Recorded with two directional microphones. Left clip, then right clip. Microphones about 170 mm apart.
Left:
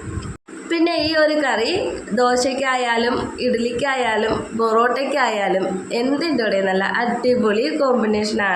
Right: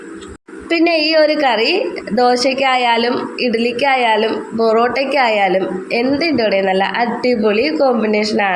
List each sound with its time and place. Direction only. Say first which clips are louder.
0.7 s a woman's voice: right 5 dB; 25° right (ahead or behind)